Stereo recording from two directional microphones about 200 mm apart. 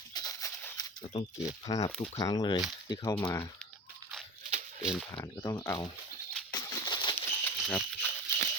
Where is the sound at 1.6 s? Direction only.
20° left (ahead or behind).